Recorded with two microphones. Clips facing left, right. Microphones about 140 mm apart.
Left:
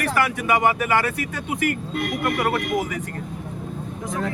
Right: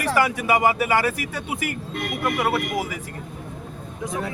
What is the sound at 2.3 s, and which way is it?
Speech, 5° right (ahead or behind).